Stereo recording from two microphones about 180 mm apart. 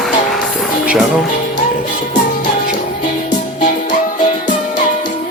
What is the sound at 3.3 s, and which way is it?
Music, 45° left (ahead or behind).